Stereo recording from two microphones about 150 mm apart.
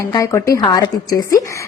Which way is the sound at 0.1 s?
20° left (ahead or behind).